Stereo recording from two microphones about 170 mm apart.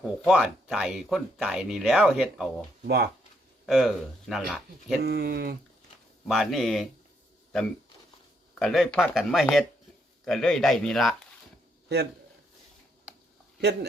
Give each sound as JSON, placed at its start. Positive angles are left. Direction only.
{"t": 0.0, "sound": "speech", "side_deg": -5}
{"t": 2.8, "sound": "speech", "side_deg": -70}
{"t": 3.7, "sound": "speech", "side_deg": 0}
{"t": 5.0, "sound": "speech", "side_deg": -70}
{"t": 6.2, "sound": "speech", "side_deg": 0}
{"t": 8.5, "sound": "speech", "side_deg": 0}